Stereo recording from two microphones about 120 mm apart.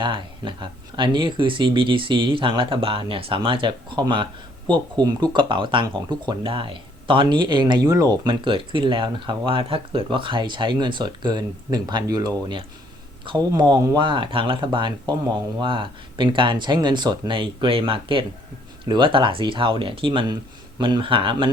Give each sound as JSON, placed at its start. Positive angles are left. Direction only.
{"t": 0.0, "sound": "speech", "side_deg": -40}